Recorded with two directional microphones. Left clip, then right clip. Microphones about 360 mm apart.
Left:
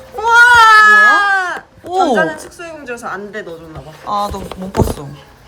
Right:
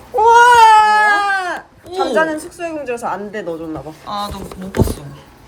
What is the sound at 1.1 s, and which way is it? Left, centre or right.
Goat, centre.